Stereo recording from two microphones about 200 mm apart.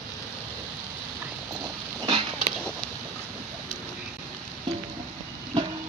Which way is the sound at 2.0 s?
25° right (ahead or behind).